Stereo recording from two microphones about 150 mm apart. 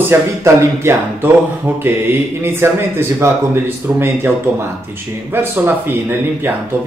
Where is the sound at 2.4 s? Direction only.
15° right (ahead or behind).